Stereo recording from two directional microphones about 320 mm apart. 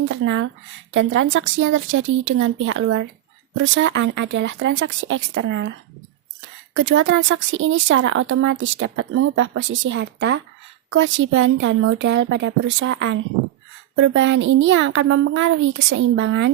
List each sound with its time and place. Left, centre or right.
0.0 s speech: right
6.7 s speech: right